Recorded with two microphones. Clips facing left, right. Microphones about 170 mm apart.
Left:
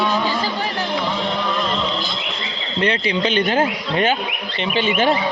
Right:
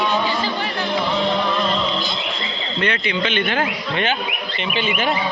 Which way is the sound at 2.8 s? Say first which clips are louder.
Left 3 dB; 35° left (ahead or behind).